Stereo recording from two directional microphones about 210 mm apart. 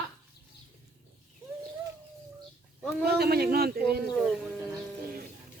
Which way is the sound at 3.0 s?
50° right (ahead or behind).